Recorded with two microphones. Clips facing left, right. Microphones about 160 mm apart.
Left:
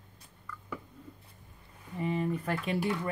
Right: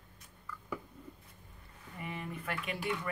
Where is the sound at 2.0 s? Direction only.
30° left (ahead or behind).